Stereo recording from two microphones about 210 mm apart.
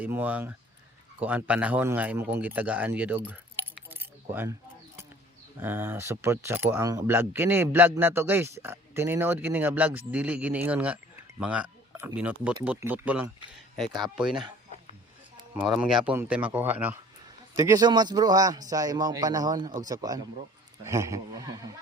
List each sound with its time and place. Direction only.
0.0 s speech: 10° right (ahead or behind)
3.8 s keys jangling: 10° right (ahead or behind)
5.5 s speech: 10° right (ahead or behind)
15.5 s speech: 5° right (ahead or behind)